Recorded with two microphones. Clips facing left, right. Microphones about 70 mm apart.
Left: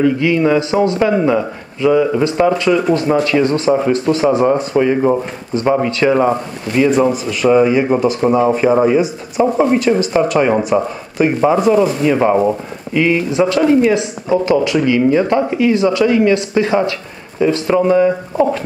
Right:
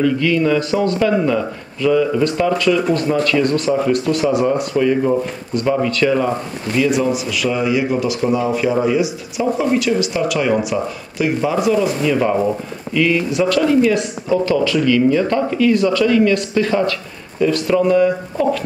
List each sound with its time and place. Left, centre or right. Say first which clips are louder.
0.0 s a man's voice: left 3 dB; left